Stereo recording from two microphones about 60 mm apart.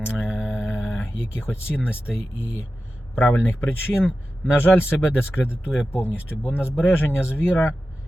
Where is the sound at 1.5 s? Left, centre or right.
Left.